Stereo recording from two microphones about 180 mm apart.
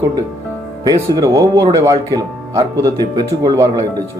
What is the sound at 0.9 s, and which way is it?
Speech, 20° right (ahead or behind).